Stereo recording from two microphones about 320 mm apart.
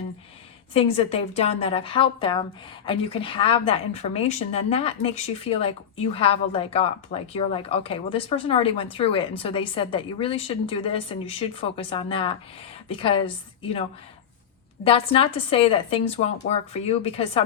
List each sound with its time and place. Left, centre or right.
0.7 s a woman's voice: centre
14.8 s a woman's voice: centre